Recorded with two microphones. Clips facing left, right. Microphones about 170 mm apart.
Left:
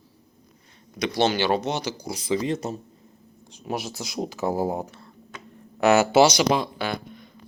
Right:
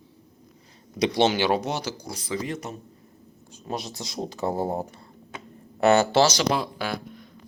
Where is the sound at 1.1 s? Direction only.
15° right (ahead or behind).